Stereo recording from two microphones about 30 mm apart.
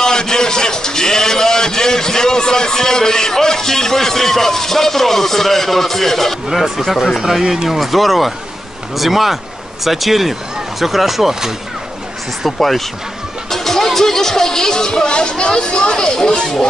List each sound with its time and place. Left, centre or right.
0.0 s a man's voice: left
6.5 s speech: centre
12.4 s speech: centre; by 16.4 s left